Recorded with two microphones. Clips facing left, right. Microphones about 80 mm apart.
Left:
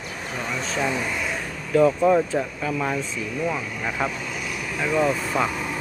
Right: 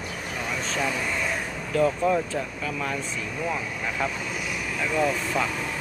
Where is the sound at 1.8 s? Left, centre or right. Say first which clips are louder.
Left 5 dB; left.